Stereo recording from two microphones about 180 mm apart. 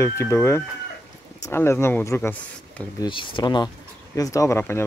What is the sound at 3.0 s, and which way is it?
Speech, 25° left (ahead or behind).